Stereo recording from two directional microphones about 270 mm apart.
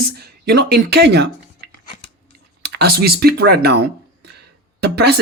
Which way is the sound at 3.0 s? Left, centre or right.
Right.